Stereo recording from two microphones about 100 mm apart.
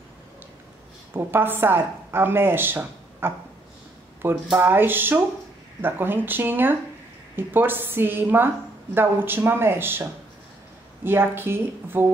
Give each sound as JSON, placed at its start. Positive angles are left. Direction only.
{"t": 1.1, "sound": "a woman's voice", "side_deg": -20}
{"t": 11.1, "sound": "a woman's voice", "side_deg": -20}